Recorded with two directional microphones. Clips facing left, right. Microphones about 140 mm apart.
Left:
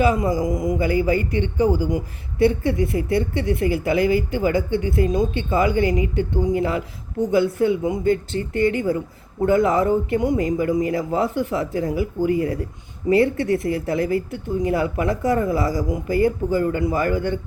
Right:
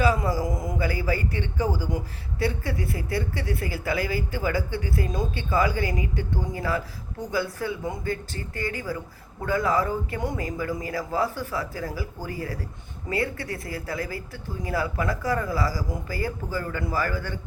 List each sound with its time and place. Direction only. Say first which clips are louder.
0.0 s speech: left 5 dB; 20° left (ahead or behind)